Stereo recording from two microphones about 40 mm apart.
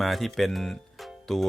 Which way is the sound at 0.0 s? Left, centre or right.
Centre.